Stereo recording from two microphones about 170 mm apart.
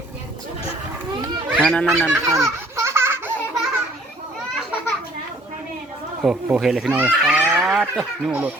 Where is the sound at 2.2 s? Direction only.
20° right (ahead or behind).